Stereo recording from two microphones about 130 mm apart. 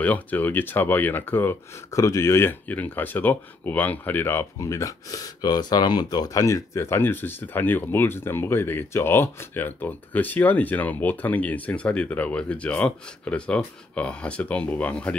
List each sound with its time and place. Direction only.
0.0 s speech: 10° left (ahead or behind)